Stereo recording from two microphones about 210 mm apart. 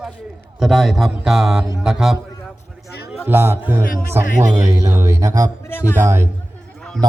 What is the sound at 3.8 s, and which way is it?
Speech, 40° left (ahead or behind).